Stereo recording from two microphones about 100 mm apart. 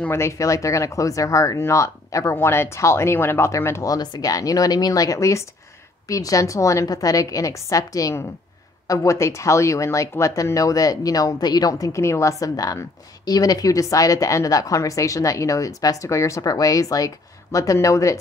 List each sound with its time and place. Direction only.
0.0 s speech: 25° left (ahead or behind)
3.9 s speech: 40° left (ahead or behind)